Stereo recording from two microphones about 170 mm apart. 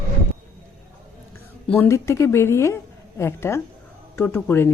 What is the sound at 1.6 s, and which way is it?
Speech, 10° left (ahead or behind).